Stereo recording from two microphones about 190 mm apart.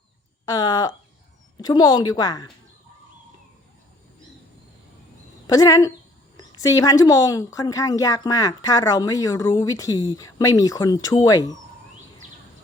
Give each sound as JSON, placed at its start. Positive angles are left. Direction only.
{"t": 0.4, "sound": "speech", "side_deg": 20}
{"t": 5.5, "sound": "speech", "side_deg": 20}